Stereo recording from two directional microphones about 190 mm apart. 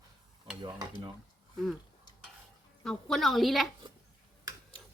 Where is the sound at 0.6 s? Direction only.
20° right (ahead or behind).